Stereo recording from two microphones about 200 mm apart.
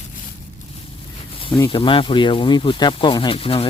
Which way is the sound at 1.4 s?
25° left (ahead or behind).